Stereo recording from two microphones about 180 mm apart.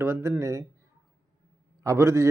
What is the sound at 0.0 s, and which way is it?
Speech, 15° right (ahead or behind).